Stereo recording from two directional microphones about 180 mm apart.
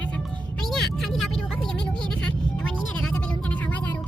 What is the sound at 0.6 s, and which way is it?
Vehicle, centre (ahead or behind).